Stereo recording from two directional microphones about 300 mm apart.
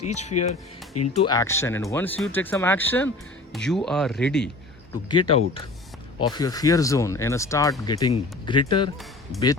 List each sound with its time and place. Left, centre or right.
0.1 s speech: left; by 4.4 s centre
5.0 s speech: centre
9.3 s speech: centre